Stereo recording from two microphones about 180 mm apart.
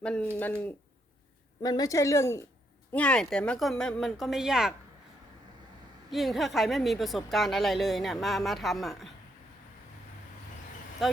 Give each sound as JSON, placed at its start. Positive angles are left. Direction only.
{"t": 0.0, "sound": "speech", "side_deg": 5}
{"t": 1.6, "sound": "a woman's voice", "side_deg": 20}
{"t": 6.1, "sound": "a woman's voice", "side_deg": 0}
{"t": 11.0, "sound": "speech", "side_deg": 0}